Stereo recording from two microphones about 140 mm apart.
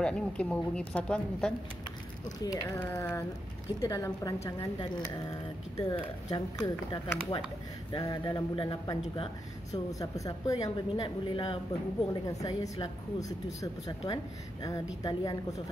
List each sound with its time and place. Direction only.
0.0 s a woman's voice: 5° left (ahead or behind)
2.4 s speech: 25° left (ahead or behind)
2.8 s a woman's voice: 15° left (ahead or behind); by 11.5 s 35° left (ahead or behind)
12.1 s speech: 25° left (ahead or behind)